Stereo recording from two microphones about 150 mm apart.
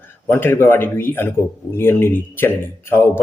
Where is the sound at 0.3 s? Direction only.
15° left (ahead or behind).